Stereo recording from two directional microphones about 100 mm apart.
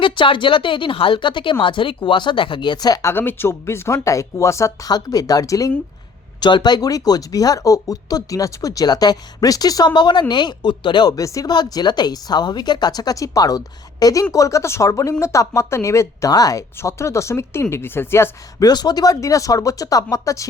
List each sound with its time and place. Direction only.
0.0 s a woman's voice: 55° left (ahead or behind)
3.0 s speech: 25° left (ahead or behind)
6.4 s speech: 45° left (ahead or behind); by 18.3 s 25° left (ahead or behind)
18.6 s speech: 45° left (ahead or behind)